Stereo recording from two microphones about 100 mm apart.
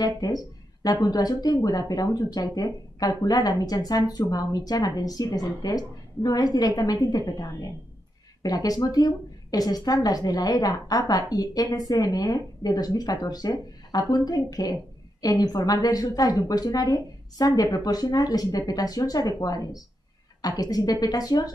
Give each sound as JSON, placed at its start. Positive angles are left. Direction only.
{"t": 0.0, "sound": "speech", "side_deg": 40}